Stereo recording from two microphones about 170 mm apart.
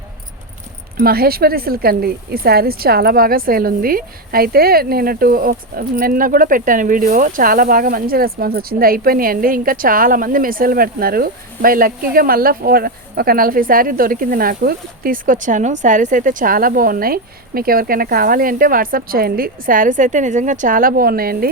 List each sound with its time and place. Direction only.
0.9 s speech: 65° right (ahead or behind)